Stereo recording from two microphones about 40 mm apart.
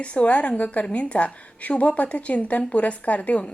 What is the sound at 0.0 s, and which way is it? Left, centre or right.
A woman's voice, left.